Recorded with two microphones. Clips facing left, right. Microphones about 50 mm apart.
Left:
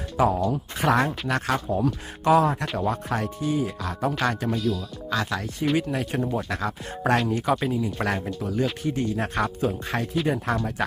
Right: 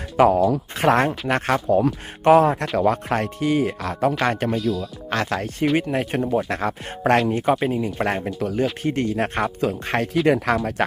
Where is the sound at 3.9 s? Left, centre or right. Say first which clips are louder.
Right 6 dB; right.